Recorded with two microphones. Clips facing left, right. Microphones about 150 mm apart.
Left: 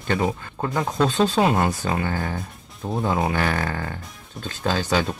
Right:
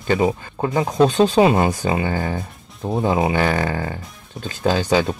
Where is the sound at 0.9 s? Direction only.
20° right (ahead or behind).